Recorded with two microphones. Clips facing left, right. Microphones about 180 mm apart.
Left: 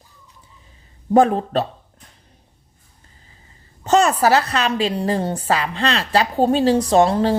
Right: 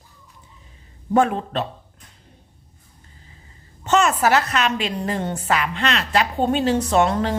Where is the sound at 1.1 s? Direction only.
35° left (ahead or behind).